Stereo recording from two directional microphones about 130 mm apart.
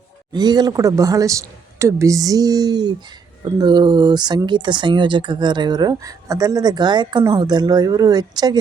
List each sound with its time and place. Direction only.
0.3 s speech: 30° right (ahead or behind)